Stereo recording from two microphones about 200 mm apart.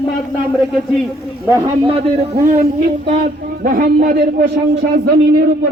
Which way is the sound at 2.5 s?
35° right (ahead or behind).